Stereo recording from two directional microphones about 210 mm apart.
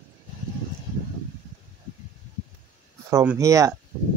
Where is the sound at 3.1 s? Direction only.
10° right (ahead or behind).